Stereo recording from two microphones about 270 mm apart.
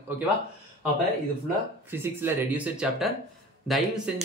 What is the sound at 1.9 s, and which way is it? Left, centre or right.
Speech, centre.